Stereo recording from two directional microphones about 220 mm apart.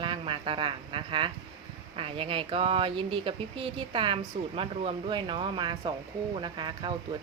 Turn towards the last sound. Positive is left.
turn(degrees=-20)  # may be behind; listen again after turning